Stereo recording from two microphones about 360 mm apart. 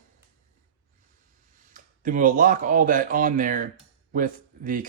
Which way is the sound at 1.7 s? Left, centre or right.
Right.